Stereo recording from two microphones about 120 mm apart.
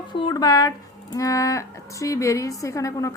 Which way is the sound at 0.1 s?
40° left (ahead or behind).